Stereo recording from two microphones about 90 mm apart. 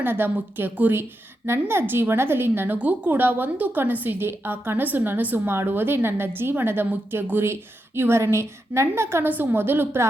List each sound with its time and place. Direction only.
0.0 s a woman's voice: 25° right (ahead or behind)